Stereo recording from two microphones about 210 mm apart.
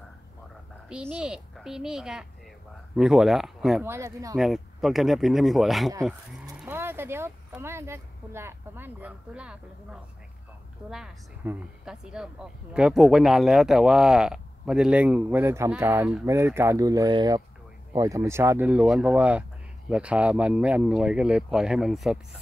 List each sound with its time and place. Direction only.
0.8 s speech: 5° right (ahead or behind)
3.8 s speech: 15° right (ahead or behind)
4.4 s speech: centre (ahead or behind)